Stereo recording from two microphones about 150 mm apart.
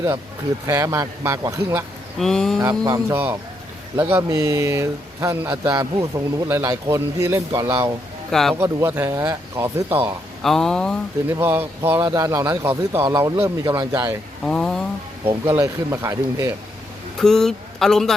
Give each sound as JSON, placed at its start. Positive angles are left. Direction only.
{"t": 0.7, "sound": "speech", "side_deg": -20}
{"t": 2.1, "sound": "speech", "side_deg": 5}
{"t": 2.6, "sound": "speech", "side_deg": -25}
{"t": 8.3, "sound": "a man's voice", "side_deg": 0}
{"t": 8.5, "sound": "speech", "side_deg": -15}
{"t": 10.4, "sound": "speech", "side_deg": 0}
{"t": 11.3, "sound": "speech", "side_deg": -15}
{"t": 14.4, "sound": "a sound", "side_deg": 5}
{"t": 15.4, "sound": "speech", "side_deg": -15}
{"t": 17.2, "sound": "speech", "side_deg": 5}